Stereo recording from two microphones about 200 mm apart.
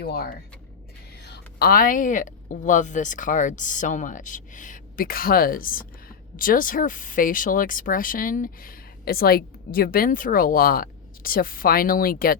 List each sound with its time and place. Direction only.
0.1 s speech: 50° left (ahead or behind)